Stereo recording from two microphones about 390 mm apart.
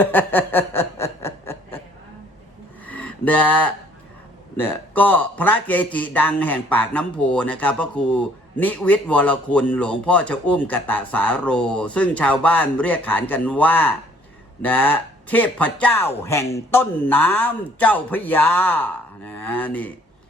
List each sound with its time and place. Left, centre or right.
0.0 s snicker: centre
2.8 s a sound: centre
4.5 s speech: centre